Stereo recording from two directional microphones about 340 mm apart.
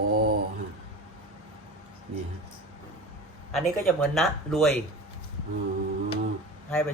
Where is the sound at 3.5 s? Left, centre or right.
Centre.